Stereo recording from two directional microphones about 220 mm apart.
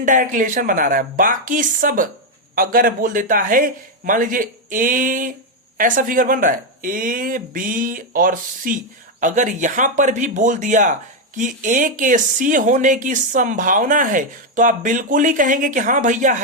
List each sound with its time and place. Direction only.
0.0 s speech: 35° right (ahead or behind)